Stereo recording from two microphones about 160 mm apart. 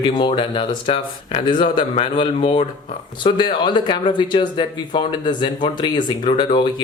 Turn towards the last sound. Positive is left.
turn(degrees=30)  # may be behind; listen again after turning